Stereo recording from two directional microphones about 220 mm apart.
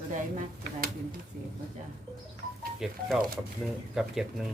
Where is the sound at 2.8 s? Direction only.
Centre (ahead or behind).